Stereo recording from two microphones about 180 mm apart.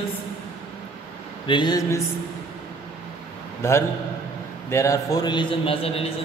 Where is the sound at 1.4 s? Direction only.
25° left (ahead or behind).